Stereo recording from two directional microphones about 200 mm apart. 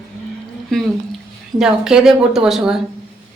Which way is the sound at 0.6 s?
Centre (ahead or behind).